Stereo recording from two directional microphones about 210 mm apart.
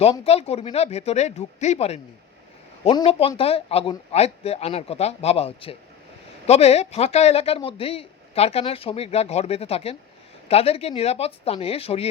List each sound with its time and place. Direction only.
0.0 s speech: 30° left (ahead or behind)